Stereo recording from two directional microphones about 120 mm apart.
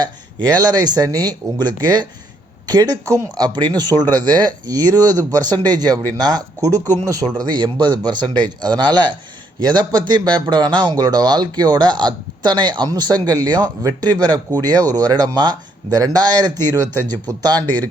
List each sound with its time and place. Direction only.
0.6 s a man's voice: 35° right (ahead or behind)
16.6 s speech: 15° left (ahead or behind)
17.2 s a man's voice: 35° right (ahead or behind)
17.6 s speech: 10° left (ahead or behind)